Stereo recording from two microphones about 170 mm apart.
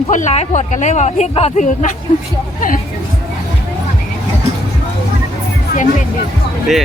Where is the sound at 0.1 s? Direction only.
45° left (ahead or behind).